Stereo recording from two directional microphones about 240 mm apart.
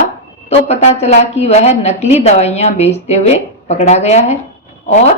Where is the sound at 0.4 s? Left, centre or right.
Left.